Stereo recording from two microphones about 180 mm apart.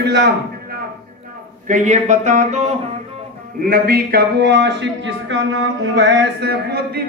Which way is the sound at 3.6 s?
60° right (ahead or behind).